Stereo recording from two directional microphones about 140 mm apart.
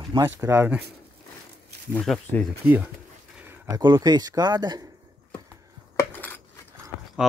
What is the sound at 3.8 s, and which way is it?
Speech, 30° right (ahead or behind).